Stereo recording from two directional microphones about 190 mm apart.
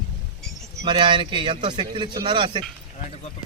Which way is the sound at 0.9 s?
25° right (ahead or behind).